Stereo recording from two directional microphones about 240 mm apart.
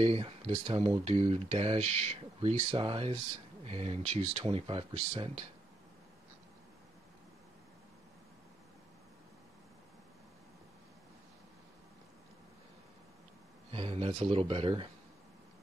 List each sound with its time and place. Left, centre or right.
0.0 s speech: right
13.7 s speech: right